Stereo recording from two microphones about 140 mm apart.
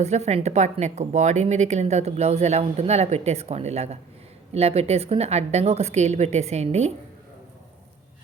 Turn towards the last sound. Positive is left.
turn(degrees=-50)  # may be behind; listen again after turning